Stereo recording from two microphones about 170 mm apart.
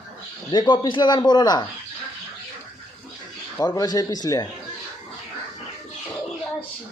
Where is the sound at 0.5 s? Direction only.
25° left (ahead or behind).